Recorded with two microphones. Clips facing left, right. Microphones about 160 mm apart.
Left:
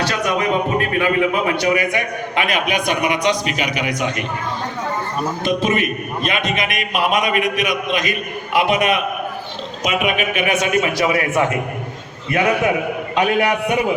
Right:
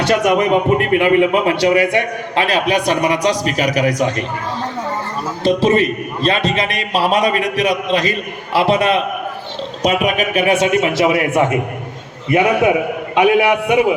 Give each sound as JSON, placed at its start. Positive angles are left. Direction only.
{"t": 0.0, "sound": "a man's voice", "side_deg": -20}
{"t": 5.4, "sound": "a man's voice", "side_deg": -30}
{"t": 13.1, "sound": "a man's voice", "side_deg": -10}